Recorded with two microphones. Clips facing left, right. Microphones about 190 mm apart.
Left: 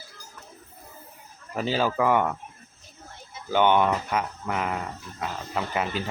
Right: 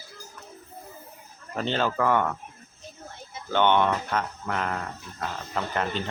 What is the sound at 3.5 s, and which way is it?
Speech, 10° left (ahead or behind).